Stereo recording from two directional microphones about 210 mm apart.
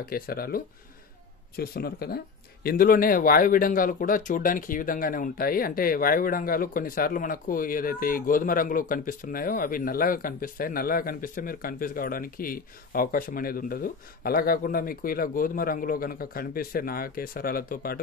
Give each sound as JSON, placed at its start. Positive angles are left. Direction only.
{"t": 0.0, "sound": "speech", "side_deg": 45}